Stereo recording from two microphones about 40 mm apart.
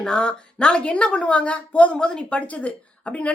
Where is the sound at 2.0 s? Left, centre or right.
Left.